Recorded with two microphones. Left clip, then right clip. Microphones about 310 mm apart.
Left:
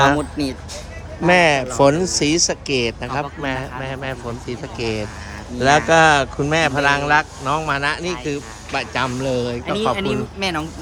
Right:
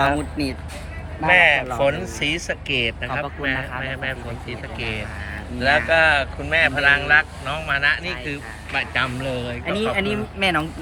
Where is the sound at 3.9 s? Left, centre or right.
Centre.